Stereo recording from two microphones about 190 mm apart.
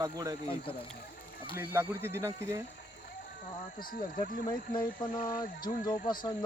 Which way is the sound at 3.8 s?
45° left (ahead or behind).